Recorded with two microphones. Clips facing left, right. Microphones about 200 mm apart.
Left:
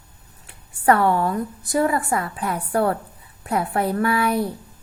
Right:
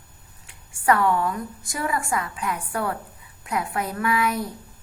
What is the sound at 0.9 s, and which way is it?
Speech, 30° left (ahead or behind).